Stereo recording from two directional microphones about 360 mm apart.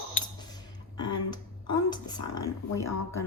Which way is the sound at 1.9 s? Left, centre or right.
Centre.